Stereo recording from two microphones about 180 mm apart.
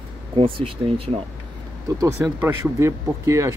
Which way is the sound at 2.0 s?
10° right (ahead or behind).